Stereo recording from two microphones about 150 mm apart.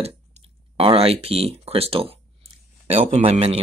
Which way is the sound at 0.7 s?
40° right (ahead or behind).